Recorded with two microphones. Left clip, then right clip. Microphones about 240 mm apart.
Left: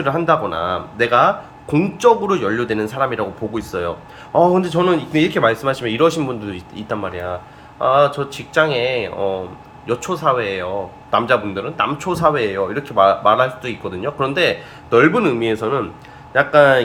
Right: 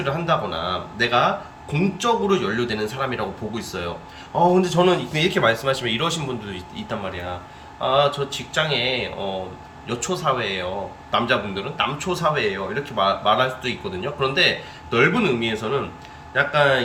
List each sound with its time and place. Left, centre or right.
0.0 s speech: centre